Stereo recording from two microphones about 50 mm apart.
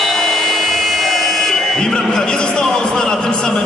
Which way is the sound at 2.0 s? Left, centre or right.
Centre.